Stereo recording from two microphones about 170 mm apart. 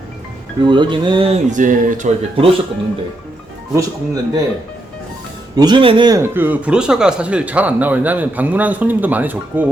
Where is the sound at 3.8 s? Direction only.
20° right (ahead or behind).